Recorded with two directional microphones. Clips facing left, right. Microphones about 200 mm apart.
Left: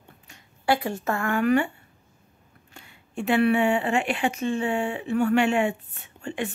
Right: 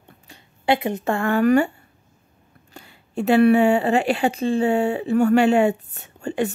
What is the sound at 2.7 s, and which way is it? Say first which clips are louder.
Speech: right 6 dB; 35° right (ahead or behind).